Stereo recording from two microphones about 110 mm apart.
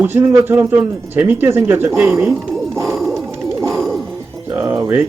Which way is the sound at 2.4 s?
Centre (ahead or behind).